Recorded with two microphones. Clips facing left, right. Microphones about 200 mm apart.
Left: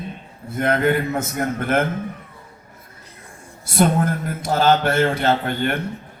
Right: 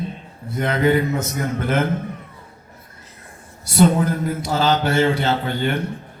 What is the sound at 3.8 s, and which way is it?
Speech, 50° left (ahead or behind).